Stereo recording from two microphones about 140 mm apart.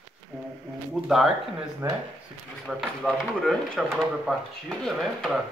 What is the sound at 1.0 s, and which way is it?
Speech, 5° right (ahead or behind).